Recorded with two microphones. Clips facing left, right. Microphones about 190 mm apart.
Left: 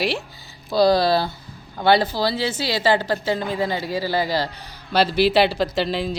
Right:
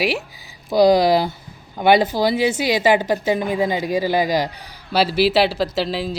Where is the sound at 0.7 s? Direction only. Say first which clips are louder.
Right 3 dB; 15° right (ahead or behind).